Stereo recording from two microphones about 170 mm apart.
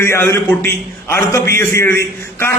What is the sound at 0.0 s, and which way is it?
A man's voice, 15° left (ahead or behind).